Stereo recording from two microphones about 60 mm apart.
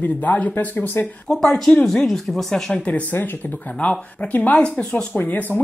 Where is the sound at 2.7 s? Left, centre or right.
Left.